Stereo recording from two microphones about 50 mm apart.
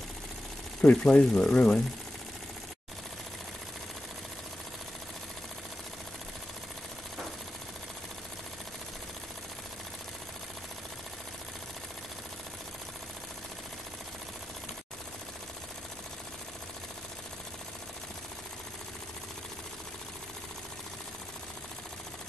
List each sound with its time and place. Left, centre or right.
0.8 s speech: left